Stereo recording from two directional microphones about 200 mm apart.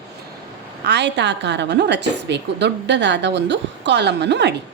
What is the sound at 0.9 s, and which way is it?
A woman's voice, 60° right (ahead or behind).